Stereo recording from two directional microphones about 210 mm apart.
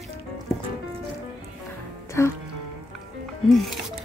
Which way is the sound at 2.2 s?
10° left (ahead or behind).